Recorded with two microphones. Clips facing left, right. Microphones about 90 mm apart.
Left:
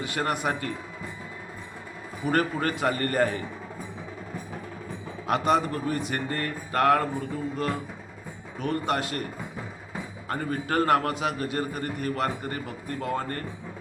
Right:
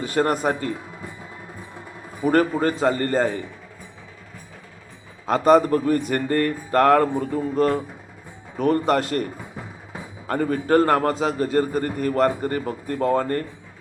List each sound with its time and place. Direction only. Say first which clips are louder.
0.0 s a man's voice: right 7 dB; 40° right (ahead or behind)
2.2 s a man's voice: right 6 dB; 40° right (ahead or behind)
2.6 s a man's voice: right 6 dB; 25° right (ahead or behind)
5.2 s a man's voice: right 7 dB; 35° right (ahead or behind)
5.5 s a man's voice: right 8 dB; 45° right (ahead or behind)
10.2 s a man's voice: right 8 dB; 50° right (ahead or behind)
10.7 s a man's voice: right 5 dB; 35° right (ahead or behind)